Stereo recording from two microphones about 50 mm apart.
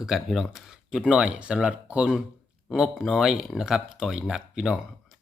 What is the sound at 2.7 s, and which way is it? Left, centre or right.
Speech, centre.